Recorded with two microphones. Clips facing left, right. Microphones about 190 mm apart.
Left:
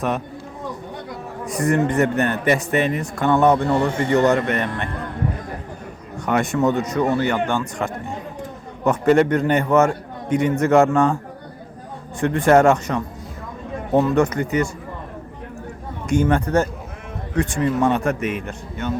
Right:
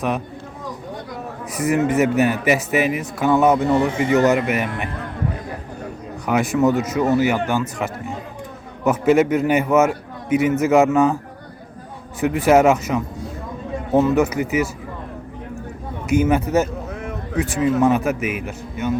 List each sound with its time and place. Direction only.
1.5 s a man's voice: 5° right (ahead or behind)
6.2 s a man's voice: centre (ahead or behind)
12.2 s a man's voice: 5° right (ahead or behind)
16.0 s a man's voice: 5° right (ahead or behind)